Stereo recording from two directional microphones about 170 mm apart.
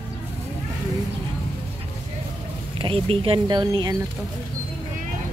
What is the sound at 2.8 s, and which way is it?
Speech, 30° right (ahead or behind).